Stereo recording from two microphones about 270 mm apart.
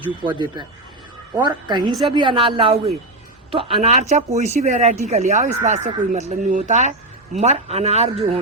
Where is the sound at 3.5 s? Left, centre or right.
Centre.